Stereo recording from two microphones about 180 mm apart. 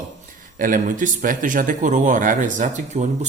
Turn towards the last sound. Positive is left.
turn(degrees=-40)  # may be behind; listen again after turning